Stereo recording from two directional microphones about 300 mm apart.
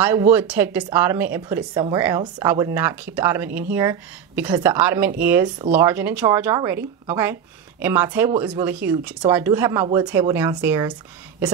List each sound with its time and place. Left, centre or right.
0.0 s speech: centre